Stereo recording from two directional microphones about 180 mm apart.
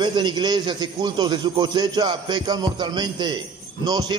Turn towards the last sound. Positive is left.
turn(degrees=-20)  # may be behind; listen again after turning